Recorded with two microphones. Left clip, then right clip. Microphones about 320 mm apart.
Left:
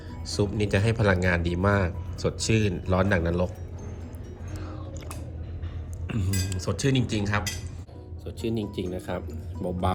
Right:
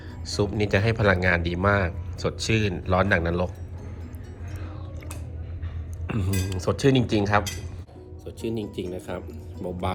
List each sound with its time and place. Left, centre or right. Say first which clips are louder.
0.3 s speech: right 2 dB; centre
6.1 s speech: right 2 dB; centre
8.2 s speech: even; centre